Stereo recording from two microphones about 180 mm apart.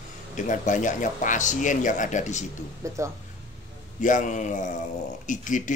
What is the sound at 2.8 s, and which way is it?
Speech, 15° right (ahead or behind).